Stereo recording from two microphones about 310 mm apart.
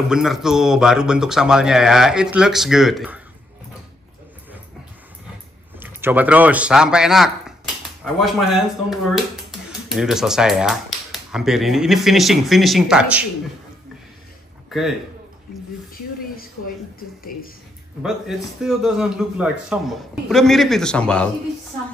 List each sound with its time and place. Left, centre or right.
0.1 s speech: centre
5.8 s speech: centre
14.7 s a man's voice: centre
15.9 s a sound: left
18.0 s speech: centre